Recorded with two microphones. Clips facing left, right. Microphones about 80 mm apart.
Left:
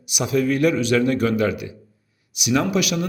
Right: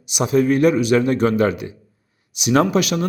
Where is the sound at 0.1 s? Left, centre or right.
Right.